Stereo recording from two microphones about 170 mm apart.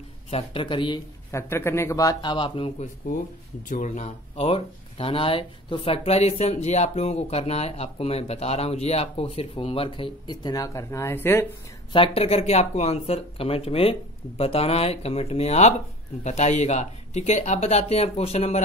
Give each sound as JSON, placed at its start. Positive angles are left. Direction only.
{"t": 0.3, "sound": "speech", "side_deg": 35}
{"t": 1.5, "sound": "speech", "side_deg": 15}
{"t": 3.0, "sound": "speech", "side_deg": 50}
{"t": 11.9, "sound": "speech", "side_deg": 30}